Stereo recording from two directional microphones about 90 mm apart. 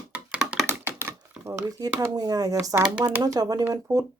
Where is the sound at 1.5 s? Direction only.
40° right (ahead or behind).